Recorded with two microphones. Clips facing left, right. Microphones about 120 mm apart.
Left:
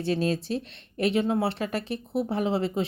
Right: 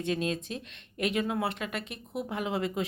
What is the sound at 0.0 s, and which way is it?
Speech, 35° left (ahead or behind).